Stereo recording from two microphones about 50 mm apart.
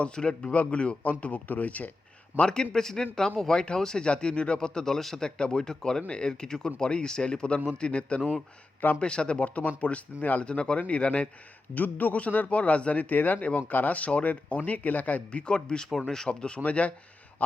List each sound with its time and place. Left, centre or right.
0.0 s speech: centre
0.5 s speech: left
2.3 s a man's voice: right
2.7 s speech: centre; by 10.4 s left
10.4 s speech: left
11.7 s speech: left; by 15.9 s centre
15.9 s speech: centre
16.3 s speech: left